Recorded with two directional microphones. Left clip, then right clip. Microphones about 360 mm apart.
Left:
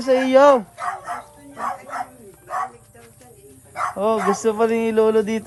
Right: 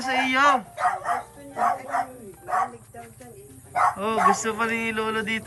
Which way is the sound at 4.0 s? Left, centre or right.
Centre.